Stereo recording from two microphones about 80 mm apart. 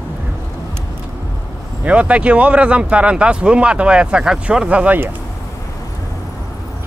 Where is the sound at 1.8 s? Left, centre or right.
Centre.